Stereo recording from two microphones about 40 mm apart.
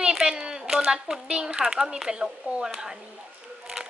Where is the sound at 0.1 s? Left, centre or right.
Centre.